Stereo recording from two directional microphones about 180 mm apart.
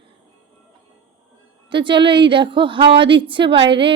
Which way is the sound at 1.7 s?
25° right (ahead or behind).